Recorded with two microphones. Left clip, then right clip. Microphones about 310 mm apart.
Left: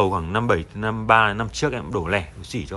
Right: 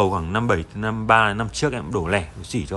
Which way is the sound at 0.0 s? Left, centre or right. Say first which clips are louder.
Even; centre.